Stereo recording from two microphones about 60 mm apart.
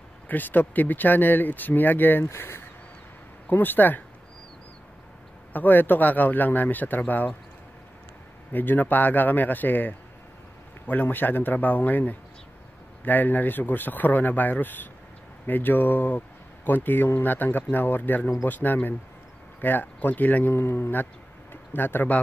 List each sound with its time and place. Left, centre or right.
0.3 s a man's voice: left
3.4 s a man's voice: left
5.5 s speech: left
8.5 s a man's voice: left
20.5 s a man's voice: left